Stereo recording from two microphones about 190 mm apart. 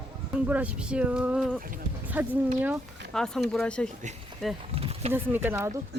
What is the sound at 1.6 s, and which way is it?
Speech, 45° right (ahead or behind).